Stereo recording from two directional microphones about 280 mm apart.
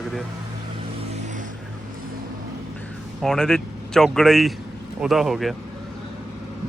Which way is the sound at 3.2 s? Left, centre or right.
Centre.